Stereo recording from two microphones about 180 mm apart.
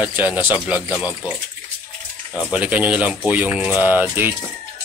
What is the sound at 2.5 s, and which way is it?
Speech, 5° right (ahead or behind).